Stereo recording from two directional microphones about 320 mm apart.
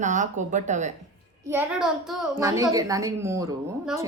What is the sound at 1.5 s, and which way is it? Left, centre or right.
A child's voice, centre.